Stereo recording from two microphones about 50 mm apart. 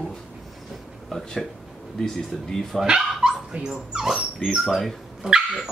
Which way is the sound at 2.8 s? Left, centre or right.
Centre.